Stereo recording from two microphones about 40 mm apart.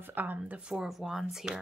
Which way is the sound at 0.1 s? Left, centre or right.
Right.